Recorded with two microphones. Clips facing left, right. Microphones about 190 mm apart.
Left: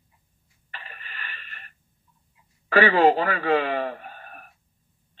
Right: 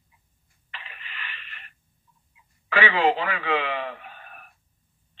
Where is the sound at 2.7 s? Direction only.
40° left (ahead or behind).